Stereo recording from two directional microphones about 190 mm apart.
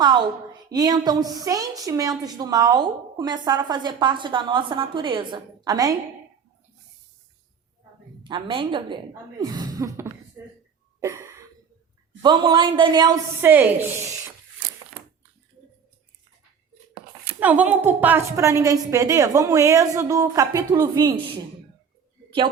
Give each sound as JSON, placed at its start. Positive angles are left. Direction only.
{"t": 0.7, "sound": "speech", "side_deg": -20}
{"t": 8.2, "sound": "speech", "side_deg": -25}
{"t": 11.0, "sound": "a sound", "side_deg": -15}
{"t": 12.2, "sound": "speech", "side_deg": -25}
{"t": 13.4, "sound": "a woman's voice", "side_deg": -10}
{"t": 17.4, "sound": "a woman's voice", "side_deg": -10}